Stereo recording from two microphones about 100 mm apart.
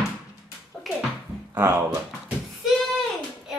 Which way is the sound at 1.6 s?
25° right (ahead or behind).